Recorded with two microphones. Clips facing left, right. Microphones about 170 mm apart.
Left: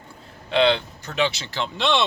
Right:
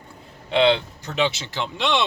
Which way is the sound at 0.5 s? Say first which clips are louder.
Right 1 dB; 20° right (ahead or behind).